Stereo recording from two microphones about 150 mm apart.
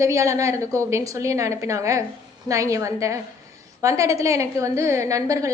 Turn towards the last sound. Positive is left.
turn(degrees=-20)  # may be behind; listen again after turning